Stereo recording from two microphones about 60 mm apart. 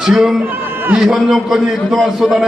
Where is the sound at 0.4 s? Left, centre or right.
Right.